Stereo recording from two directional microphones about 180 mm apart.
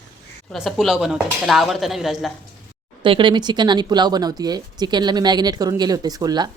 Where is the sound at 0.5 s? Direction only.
Centre (ahead or behind).